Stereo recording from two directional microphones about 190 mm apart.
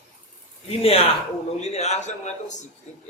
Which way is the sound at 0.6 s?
30° left (ahead or behind).